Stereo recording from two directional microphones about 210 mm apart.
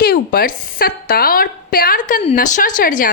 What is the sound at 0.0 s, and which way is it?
A woman's voice, 45° left (ahead or behind).